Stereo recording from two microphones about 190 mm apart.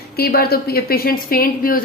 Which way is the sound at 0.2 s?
55° left (ahead or behind).